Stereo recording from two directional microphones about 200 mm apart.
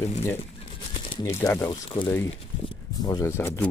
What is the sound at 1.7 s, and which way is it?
Speech, 25° left (ahead or behind).